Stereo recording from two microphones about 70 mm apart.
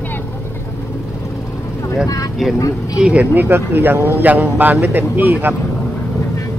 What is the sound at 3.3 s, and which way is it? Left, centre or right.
Speech, right.